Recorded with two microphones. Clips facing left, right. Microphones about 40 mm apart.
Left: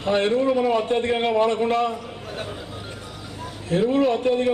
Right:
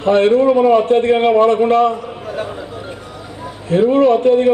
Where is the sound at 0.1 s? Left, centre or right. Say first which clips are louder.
Right 9 dB; centre.